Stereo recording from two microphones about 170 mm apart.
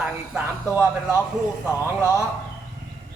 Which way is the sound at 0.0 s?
10° right (ahead or behind).